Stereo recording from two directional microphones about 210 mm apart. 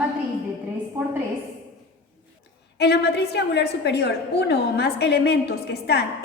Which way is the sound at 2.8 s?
50° left (ahead or behind).